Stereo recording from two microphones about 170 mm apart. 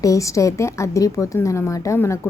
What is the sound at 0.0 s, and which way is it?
A woman's voice, 20° left (ahead or behind).